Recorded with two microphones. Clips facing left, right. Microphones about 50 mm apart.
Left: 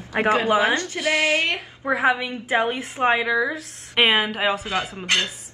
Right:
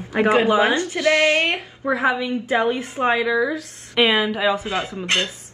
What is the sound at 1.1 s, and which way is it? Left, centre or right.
Speech, right.